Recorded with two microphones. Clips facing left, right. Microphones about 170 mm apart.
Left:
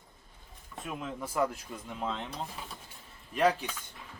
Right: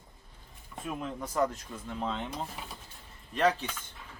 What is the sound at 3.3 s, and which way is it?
Speech, 10° left (ahead or behind).